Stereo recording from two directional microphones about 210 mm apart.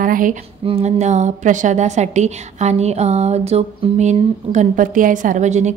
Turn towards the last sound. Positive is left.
turn(degrees=-35)  # may be behind; listen again after turning